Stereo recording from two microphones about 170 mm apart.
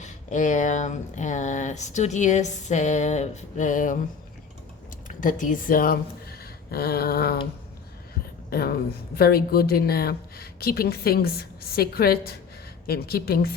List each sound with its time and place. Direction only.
0.0 s speech: 45° left (ahead or behind)
5.0 s speech: 50° left (ahead or behind); by 7.4 s 65° left (ahead or behind)
8.4 s speech: 60° left (ahead or behind)